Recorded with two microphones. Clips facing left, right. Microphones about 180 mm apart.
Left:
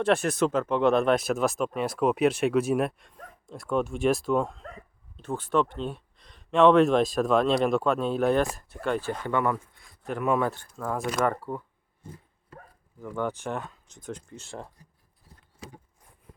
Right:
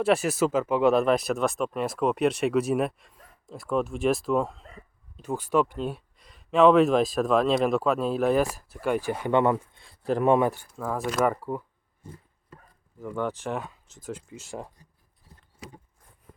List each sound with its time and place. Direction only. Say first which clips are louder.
0.0 s speech: right 1 dB; 5° right (ahead or behind); by 10.4 s 30° right (ahead or behind)
10.4 s speech: right 3 dB; 10° right (ahead or behind)
13.0 s speech: right 1 dB; centre (ahead or behind)